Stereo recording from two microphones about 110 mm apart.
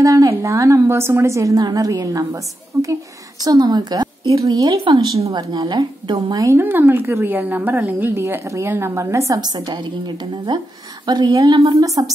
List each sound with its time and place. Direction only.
0.0 s a woman's voice: 30° right (ahead or behind)
6.4 s a woman's voice: 20° right (ahead or behind)
9.3 s speech: 35° right (ahead or behind)